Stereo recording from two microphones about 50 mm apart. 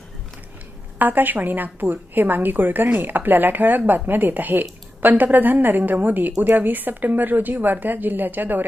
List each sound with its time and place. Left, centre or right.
0.9 s a woman's voice: right